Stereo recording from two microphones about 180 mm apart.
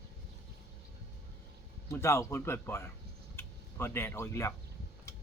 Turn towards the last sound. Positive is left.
turn(degrees=15)  # may be behind; listen again after turning